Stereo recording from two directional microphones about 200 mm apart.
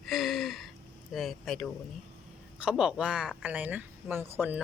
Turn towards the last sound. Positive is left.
turn(degrees=-10)  # may be behind; listen again after turning